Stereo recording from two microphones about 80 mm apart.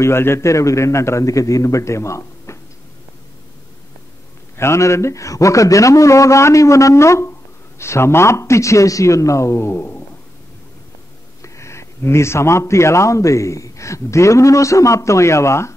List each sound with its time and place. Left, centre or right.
0.0 s a man's voice: left
4.6 s a man's voice: left
11.4 s a man's voice: left